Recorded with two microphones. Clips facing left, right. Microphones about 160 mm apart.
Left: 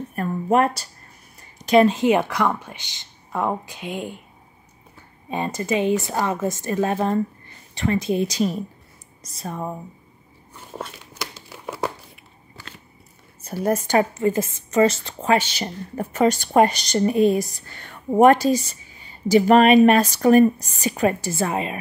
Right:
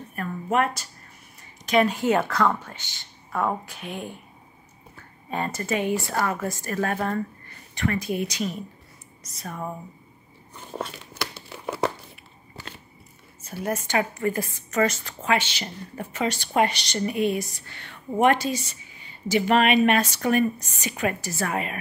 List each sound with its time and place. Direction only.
0.1 s a sound: 35° left (ahead or behind)
1.7 s a woman's voice: 35° left (ahead or behind)
2.0 s a woman's voice: 15° left (ahead or behind)
5.3 s a woman's voice: 15° left (ahead or behind)
10.5 s a sound: centre (ahead or behind)
11.4 s crumpling: centre (ahead or behind)
13.5 s a woman's voice: 40° left (ahead or behind)
14.1 s a woman's voice: 20° left (ahead or behind)